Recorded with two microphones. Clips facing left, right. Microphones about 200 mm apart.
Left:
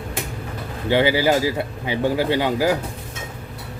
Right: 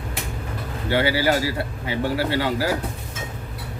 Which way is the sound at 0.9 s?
20° left (ahead or behind).